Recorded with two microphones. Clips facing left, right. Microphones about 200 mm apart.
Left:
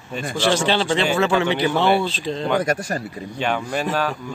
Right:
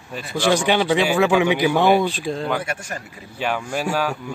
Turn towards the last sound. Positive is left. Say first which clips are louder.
# even
turn(degrees=-10)  # may be behind; listen again after turning